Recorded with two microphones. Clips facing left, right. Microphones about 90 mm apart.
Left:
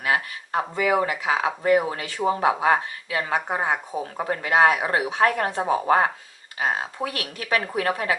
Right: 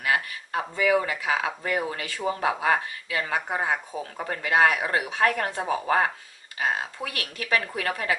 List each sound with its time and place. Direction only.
0.0 s speech: 30° left (ahead or behind)